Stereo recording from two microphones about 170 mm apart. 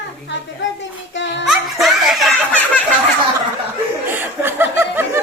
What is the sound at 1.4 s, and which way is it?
Snicker, centre (ahead or behind).